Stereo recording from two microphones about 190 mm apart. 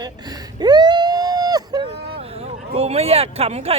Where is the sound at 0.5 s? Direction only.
20° right (ahead or behind).